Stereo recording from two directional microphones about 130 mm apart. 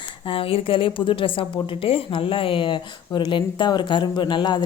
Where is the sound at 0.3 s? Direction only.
45° left (ahead or behind).